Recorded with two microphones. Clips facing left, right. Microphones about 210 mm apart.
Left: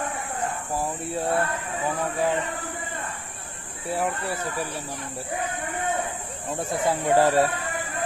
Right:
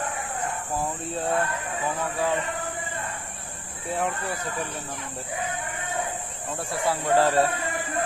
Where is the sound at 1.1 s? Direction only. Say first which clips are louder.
Left 1 dB; 10° left (ahead or behind).